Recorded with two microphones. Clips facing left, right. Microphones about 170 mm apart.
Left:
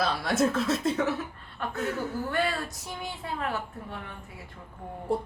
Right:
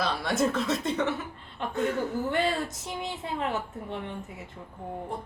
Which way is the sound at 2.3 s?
20° right (ahead or behind).